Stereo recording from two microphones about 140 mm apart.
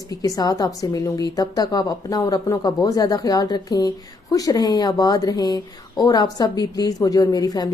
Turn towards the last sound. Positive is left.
turn(degrees=25)  # may be behind; listen again after turning